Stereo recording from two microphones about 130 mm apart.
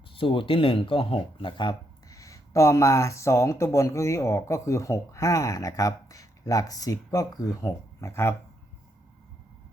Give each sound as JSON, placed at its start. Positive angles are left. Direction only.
{"t": 0.1, "sound": "speech", "side_deg": 45}